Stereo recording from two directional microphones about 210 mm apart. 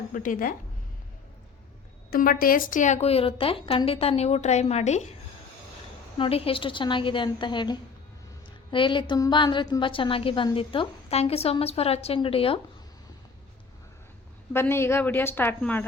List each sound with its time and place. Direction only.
0.1 s a woman's voice: 40° left (ahead or behind)
2.0 s a woman's voice: 45° left (ahead or behind)
6.1 s a woman's voice: 25° left (ahead or behind)
14.5 s a woman's voice: 10° left (ahead or behind)